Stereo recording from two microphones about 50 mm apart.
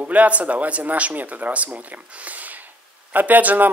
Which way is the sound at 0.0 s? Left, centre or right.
Right.